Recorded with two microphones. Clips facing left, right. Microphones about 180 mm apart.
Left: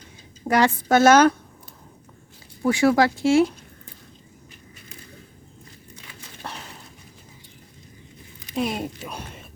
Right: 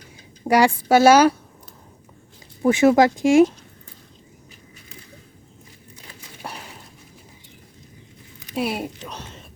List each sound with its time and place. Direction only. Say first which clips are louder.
0.4 s a woman's voice: right 3 dB; 10° right (ahead or behind)
2.6 s speech: right 3 dB; 20° right (ahead or behind)
6.4 s a sound: right 1 dB; 10° right (ahead or behind)
8.5 s a woman's voice: right 1 dB; 5° right (ahead or behind)
9.0 s speech: left 1 dB; 10° left (ahead or behind)